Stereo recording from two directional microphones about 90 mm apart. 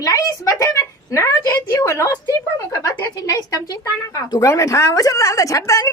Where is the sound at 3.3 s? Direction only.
40° left (ahead or behind).